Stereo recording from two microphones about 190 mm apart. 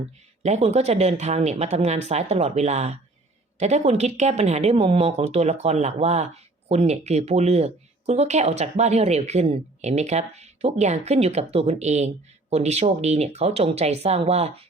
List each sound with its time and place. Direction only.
0.4 s speech: 35° right (ahead or behind)